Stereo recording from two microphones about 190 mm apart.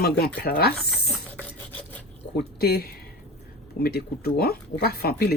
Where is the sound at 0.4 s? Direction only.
55° left (ahead or behind).